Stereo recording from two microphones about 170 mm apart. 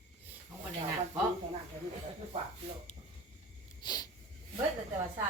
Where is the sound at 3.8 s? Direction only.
25° left (ahead or behind).